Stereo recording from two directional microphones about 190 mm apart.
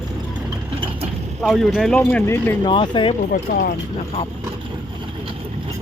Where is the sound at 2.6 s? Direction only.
25° left (ahead or behind).